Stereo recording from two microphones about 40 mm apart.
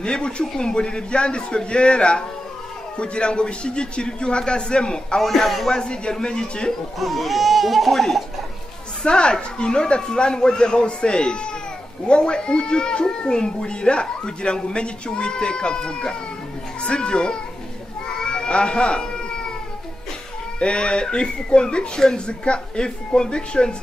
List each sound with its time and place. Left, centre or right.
0.0 s speech: left
5.2 s speech: centre
5.7 s speech: left
7.0 s speech: centre
9.0 s speech: left
18.0 s goat: left
20.5 s speech: left